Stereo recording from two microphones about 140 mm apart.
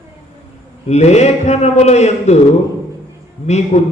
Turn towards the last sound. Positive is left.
turn(degrees=55)  # may be behind; listen again after turning